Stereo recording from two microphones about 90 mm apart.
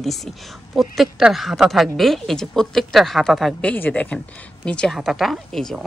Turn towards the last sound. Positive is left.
turn(degrees=5)  # may be behind; listen again after turning